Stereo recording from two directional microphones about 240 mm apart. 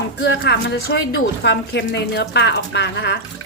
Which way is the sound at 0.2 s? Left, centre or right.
Left.